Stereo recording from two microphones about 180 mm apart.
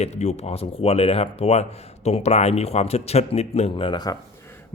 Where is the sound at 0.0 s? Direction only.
40° left (ahead or behind); by 4.5 s 20° left (ahead or behind).